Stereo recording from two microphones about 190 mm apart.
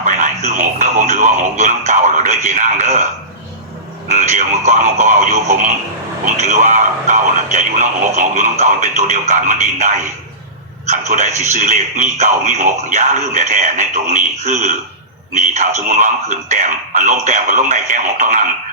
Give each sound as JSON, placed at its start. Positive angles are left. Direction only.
{"t": 0.0, "sound": "a man's voice", "side_deg": -40}
{"t": 4.1, "sound": "a man's voice", "side_deg": -40}